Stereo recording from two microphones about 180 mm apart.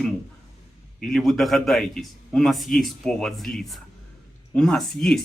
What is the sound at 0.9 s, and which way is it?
A man's voice, centre (ahead or behind).